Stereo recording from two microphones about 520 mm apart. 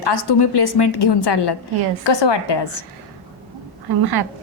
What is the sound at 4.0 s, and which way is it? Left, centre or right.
Speech, right.